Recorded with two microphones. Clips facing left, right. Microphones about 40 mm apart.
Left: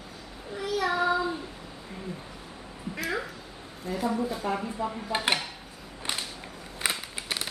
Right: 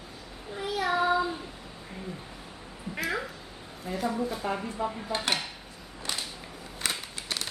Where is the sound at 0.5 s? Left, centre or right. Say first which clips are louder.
Left 2 dB; right.